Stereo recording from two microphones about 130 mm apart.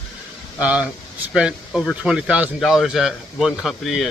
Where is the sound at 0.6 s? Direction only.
10° right (ahead or behind).